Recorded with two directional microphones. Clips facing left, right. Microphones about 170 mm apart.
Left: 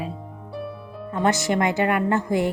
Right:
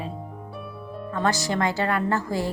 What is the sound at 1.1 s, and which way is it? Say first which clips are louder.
A woman's voice: left 3 dB; 20° left (ahead or behind).